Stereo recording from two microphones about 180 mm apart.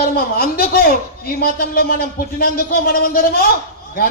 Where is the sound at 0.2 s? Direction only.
55° left (ahead or behind).